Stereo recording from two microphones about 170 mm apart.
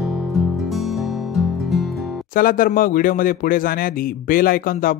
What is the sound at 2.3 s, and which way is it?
A man's voice, 55° left (ahead or behind).